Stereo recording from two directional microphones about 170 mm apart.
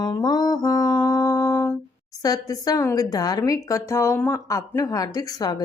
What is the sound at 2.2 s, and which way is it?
A woman's voice, 20° left (ahead or behind).